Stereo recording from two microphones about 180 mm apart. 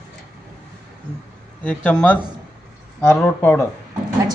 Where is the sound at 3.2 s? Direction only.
10° left (ahead or behind).